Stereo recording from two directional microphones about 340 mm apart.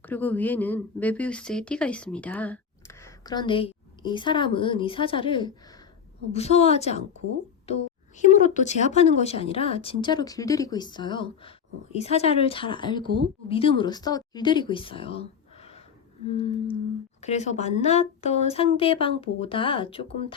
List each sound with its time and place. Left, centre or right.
0.0 s a woman's voice: centre